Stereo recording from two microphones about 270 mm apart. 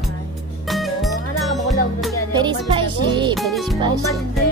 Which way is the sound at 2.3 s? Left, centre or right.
Centre.